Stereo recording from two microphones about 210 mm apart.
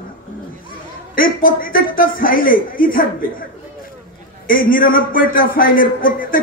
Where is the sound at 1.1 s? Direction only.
40° left (ahead or behind).